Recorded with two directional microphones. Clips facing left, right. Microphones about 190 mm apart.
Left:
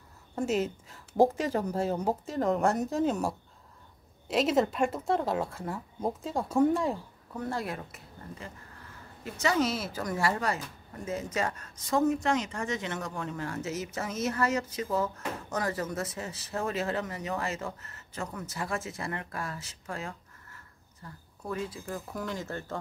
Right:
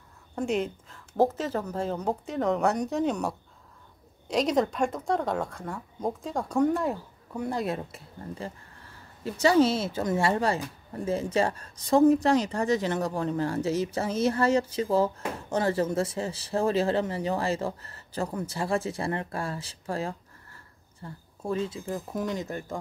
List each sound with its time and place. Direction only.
0.4 s a woman's voice: 5° left (ahead or behind)
7.3 s speech: 15° right (ahead or behind)
7.6 s speech: 25° right (ahead or behind)